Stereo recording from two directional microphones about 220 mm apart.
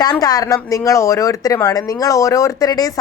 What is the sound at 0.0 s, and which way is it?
A woman's voice, 15° left (ahead or behind).